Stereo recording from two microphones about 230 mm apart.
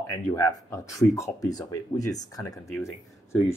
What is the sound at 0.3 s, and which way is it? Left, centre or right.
Speech, centre.